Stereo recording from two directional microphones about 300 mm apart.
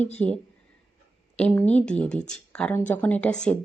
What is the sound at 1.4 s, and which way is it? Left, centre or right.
Speech, centre.